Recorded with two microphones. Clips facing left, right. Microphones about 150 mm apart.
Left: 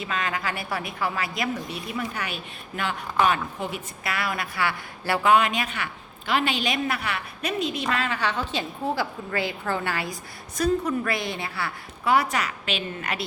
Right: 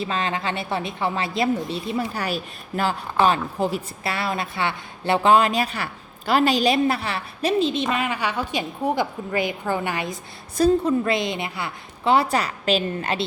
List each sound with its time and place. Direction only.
0.0 s a woman's voice: 30° right (ahead or behind)